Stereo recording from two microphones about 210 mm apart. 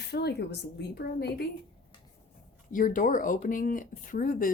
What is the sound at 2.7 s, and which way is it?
Speech, 40° left (ahead or behind).